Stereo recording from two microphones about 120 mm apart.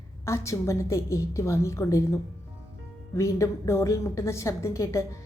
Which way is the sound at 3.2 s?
25° left (ahead or behind).